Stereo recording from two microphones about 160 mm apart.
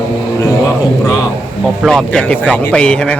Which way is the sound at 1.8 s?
5° left (ahead or behind).